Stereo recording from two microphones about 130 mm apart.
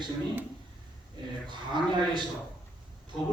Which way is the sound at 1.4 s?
35° right (ahead or behind).